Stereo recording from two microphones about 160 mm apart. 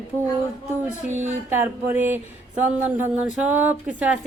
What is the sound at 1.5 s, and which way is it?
Speech, 15° right (ahead or behind).